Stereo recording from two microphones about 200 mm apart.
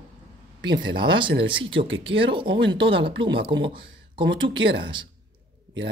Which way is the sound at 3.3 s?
60° right (ahead or behind).